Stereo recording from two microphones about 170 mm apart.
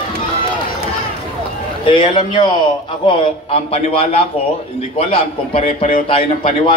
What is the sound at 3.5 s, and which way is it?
A man's voice, 35° left (ahead or behind).